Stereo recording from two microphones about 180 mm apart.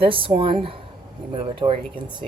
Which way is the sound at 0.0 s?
30° right (ahead or behind).